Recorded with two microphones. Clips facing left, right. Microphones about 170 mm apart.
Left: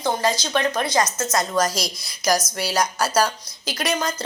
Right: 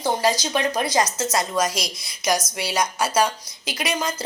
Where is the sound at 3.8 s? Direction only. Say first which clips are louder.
Left 2 dB; 5° right (ahead or behind).